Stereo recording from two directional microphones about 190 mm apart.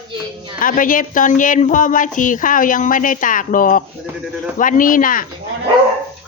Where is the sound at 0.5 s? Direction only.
45° left (ahead or behind).